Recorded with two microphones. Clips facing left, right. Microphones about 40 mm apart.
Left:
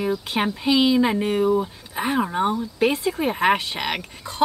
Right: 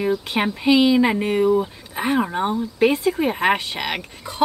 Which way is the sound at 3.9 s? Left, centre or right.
Centre.